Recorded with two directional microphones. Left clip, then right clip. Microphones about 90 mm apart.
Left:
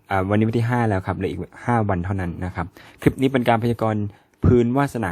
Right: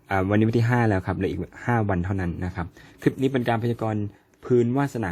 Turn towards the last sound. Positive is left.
turn(degrees=40)  # may be behind; listen again after turning